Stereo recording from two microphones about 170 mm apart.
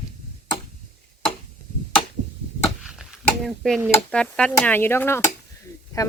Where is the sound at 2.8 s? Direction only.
5° right (ahead or behind).